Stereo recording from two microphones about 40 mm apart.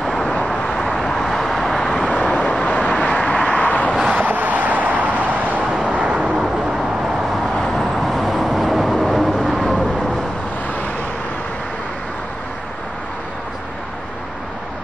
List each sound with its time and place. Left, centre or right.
0.0 s vehicle: centre
1.9 s vehicle: centre
2.6 s vehicle: left
3.0 s vehicle: left
4.1 s vehicle: right
5.7 s vehicle: right
6.3 s vehicle: centre
7.4 s vehicle: centre